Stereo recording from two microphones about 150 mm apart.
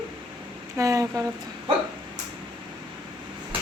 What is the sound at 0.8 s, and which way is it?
Speech, 20° right (ahead or behind).